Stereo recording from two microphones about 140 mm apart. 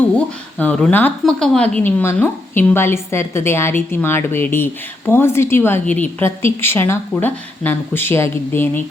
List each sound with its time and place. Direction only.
0.6 s speech: 10° left (ahead or behind)